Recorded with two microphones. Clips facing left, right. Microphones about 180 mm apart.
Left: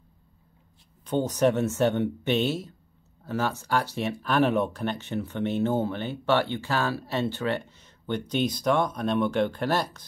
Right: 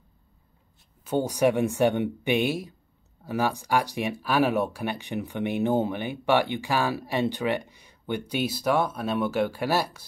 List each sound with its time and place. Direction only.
1.0 s speech: 10° right (ahead or behind)